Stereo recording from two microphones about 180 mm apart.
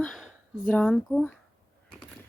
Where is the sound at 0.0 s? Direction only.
Centre (ahead or behind).